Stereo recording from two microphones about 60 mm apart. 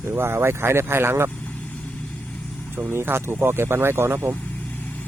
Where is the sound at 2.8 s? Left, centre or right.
Right.